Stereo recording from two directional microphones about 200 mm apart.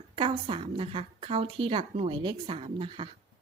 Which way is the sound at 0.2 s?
25° right (ahead or behind).